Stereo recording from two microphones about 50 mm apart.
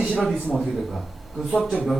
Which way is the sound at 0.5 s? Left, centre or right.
Centre.